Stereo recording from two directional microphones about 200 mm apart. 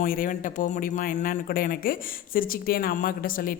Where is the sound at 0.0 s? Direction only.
45° left (ahead or behind).